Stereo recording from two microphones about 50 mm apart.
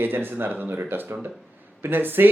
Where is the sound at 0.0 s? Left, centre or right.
Right.